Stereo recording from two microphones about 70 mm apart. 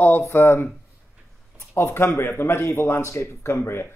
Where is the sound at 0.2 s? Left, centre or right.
Left.